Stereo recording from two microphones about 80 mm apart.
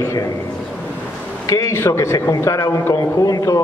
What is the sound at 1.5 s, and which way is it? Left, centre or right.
A man's voice, left.